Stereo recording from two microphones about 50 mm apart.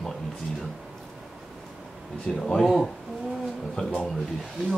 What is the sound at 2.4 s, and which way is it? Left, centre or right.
Speech, centre.